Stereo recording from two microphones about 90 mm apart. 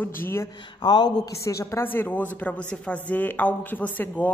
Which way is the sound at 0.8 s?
55° left (ahead or behind).